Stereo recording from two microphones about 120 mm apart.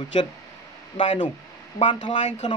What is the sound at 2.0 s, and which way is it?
Speech, 80° left.